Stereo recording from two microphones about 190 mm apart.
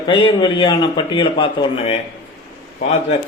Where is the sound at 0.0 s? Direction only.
25° left (ahead or behind).